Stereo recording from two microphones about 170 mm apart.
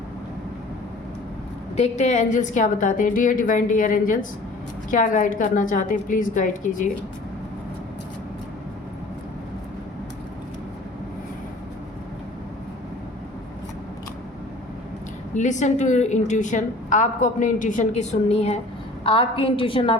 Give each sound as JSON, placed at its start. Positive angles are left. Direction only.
{"t": 1.7, "sound": "a woman's voice", "side_deg": 40}
{"t": 15.4, "sound": "a woman's voice", "side_deg": 45}